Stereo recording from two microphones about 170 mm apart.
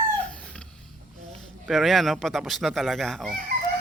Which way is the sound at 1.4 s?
Centre (ahead or behind).